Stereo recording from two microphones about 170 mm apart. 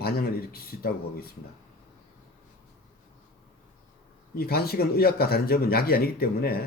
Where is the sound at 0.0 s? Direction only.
60° left (ahead or behind).